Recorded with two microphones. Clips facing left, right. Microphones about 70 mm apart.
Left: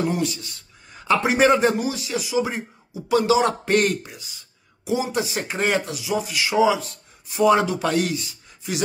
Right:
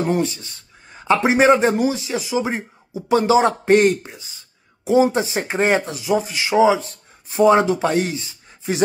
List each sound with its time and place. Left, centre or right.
0.0 s speech: right